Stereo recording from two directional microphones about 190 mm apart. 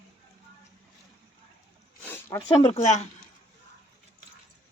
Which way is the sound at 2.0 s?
10° left (ahead or behind).